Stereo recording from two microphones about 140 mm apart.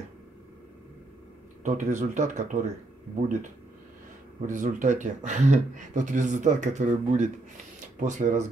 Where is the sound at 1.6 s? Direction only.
60° right (ahead or behind).